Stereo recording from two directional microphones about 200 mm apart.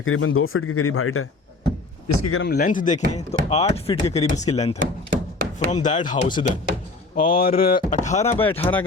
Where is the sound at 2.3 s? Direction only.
55° left (ahead or behind); by 4.6 s 35° left (ahead or behind).